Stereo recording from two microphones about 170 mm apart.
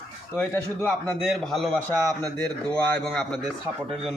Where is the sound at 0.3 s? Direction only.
10° left (ahead or behind).